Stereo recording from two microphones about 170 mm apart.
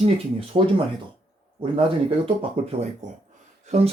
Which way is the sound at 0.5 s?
25° right (ahead or behind).